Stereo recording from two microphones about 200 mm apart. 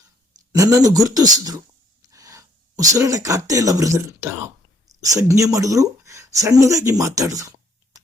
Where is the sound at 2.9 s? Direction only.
15° right (ahead or behind).